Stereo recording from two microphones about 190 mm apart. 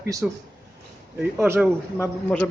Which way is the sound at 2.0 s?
10° left (ahead or behind).